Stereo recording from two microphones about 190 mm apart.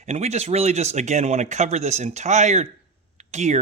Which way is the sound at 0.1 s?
35° right (ahead or behind).